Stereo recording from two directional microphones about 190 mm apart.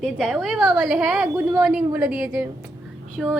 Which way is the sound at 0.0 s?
Centre (ahead or behind).